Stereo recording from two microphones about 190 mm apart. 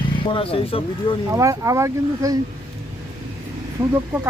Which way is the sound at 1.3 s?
15° right (ahead or behind).